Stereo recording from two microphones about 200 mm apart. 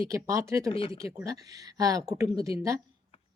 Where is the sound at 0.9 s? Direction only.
15° right (ahead or behind).